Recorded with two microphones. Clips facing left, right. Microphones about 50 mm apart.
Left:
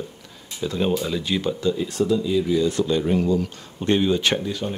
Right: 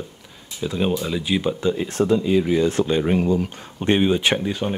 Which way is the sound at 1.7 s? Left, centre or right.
Right.